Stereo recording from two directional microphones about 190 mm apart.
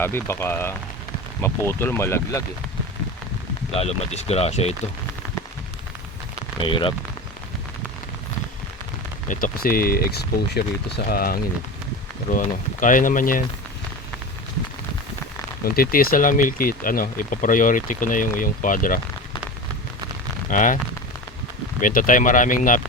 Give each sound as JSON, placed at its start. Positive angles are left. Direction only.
{"t": 0.0, "sound": "speech", "side_deg": 15}
{"t": 3.7, "sound": "speech", "side_deg": 35}
{"t": 6.6, "sound": "speech", "side_deg": 25}
{"t": 9.3, "sound": "speech", "side_deg": 50}
{"t": 15.6, "sound": "speech", "side_deg": 50}
{"t": 20.5, "sound": "speech", "side_deg": 45}
{"t": 21.8, "sound": "speech", "side_deg": 45}